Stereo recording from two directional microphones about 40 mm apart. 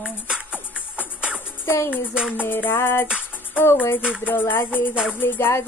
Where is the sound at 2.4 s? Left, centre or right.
Left.